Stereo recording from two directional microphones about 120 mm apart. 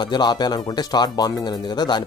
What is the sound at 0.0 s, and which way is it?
Speech, 40° left (ahead or behind).